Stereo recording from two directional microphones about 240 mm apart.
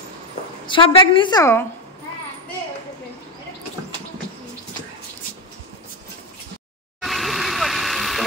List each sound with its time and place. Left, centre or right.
0.7 s a woman's voice: left
7.0 s vehicle: centre